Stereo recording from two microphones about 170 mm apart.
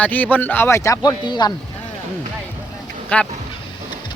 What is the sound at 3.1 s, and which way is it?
Speech, 10° left (ahead or behind).